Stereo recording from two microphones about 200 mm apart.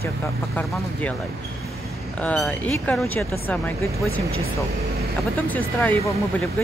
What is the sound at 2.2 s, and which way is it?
Speech, 5° left (ahead or behind).